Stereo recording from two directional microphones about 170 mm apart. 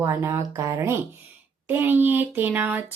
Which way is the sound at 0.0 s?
15° right (ahead or behind).